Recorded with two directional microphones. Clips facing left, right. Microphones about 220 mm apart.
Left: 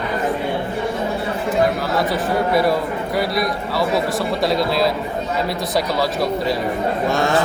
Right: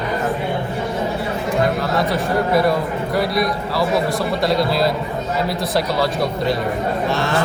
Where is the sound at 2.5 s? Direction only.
Centre (ahead or behind).